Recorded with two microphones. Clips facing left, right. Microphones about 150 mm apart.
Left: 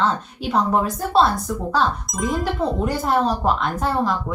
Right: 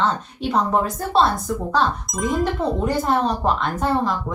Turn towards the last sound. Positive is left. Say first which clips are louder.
# even
turn(degrees=0)  # may be behind; listen again after turning